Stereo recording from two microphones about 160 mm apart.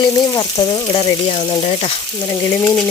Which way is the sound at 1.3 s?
40° left (ahead or behind).